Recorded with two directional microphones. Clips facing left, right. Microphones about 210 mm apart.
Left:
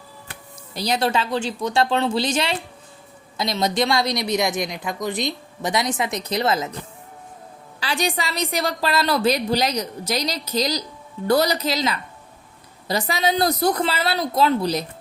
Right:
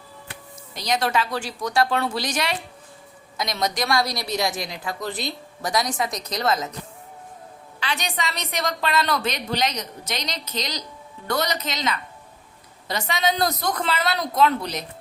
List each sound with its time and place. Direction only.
0.7 s speech: 30° left (ahead or behind)
7.8 s a woman's voice: 35° left (ahead or behind)